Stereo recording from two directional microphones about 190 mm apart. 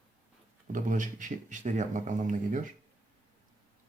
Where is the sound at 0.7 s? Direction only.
45° right (ahead or behind).